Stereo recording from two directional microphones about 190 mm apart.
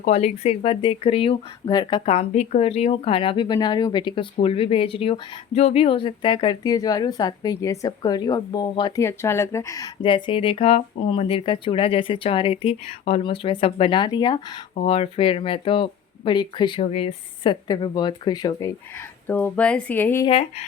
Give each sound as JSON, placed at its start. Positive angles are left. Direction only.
{"t": 0.0, "sound": "speech", "side_deg": 35}
{"t": 20.2, "sound": "speech", "side_deg": 30}